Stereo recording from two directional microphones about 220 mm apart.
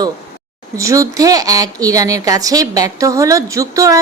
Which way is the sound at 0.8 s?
15° right (ahead or behind).